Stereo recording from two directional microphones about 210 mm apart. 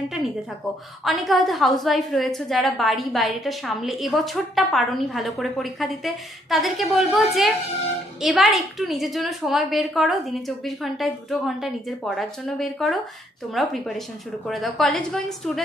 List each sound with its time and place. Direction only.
1.0 s a woman's voice: centre (ahead or behind)